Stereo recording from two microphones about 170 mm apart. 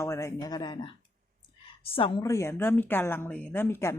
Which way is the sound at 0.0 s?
15° left (ahead or behind).